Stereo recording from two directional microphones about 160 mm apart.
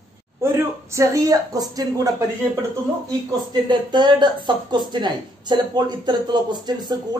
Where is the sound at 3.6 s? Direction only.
30° right (ahead or behind).